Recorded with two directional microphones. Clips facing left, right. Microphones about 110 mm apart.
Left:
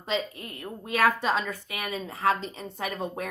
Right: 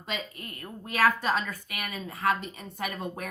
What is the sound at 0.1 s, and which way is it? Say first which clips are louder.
A woman's voice: left 6 dB; 20° left (ahead or behind).